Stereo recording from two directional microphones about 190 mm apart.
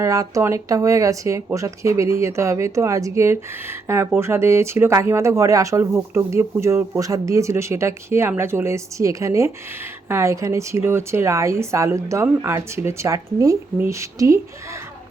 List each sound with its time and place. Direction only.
0.0 s speech: 15° right (ahead or behind)